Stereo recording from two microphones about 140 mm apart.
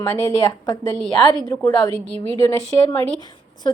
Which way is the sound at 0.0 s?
20° left (ahead or behind).